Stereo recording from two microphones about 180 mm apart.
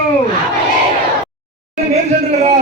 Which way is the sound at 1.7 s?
40° right (ahead or behind).